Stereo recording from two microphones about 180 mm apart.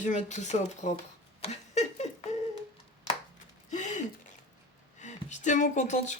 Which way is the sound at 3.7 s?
45° left (ahead or behind).